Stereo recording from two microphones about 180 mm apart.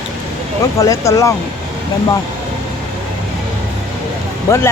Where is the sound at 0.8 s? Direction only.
20° left (ahead or behind).